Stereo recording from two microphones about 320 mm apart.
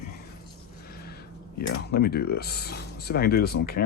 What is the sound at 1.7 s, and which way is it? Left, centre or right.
Speech, left.